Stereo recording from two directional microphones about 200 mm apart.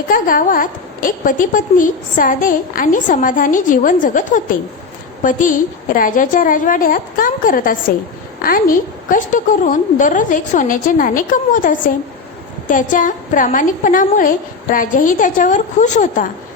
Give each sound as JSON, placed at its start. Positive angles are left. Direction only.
{"t": 0.1, "sound": "a woman's voice", "side_deg": 45}